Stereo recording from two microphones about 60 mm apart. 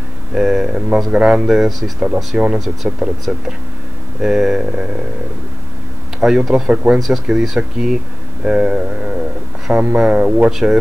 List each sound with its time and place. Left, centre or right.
0.3 s speech: centre
1.4 s speech: centre
2.3 s speech: right
6.2 s speech: centre
6.7 s speech: centre
7.0 s speech: centre; by 10.5 s right
10.5 s speech: centre